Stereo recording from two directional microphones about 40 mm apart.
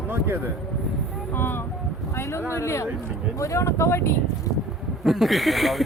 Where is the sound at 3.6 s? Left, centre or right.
Left.